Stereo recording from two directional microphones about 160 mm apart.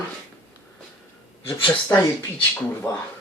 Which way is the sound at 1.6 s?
20° left (ahead or behind).